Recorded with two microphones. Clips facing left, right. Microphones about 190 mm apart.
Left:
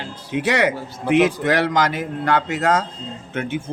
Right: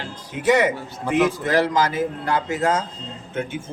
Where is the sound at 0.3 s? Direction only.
70° left (ahead or behind).